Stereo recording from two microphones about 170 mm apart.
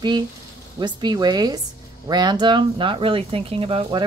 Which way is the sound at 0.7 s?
25° right (ahead or behind).